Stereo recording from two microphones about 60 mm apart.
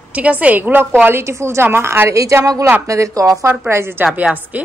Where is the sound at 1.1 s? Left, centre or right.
Right.